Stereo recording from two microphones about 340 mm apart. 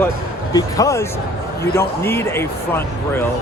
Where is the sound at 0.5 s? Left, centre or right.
Centre.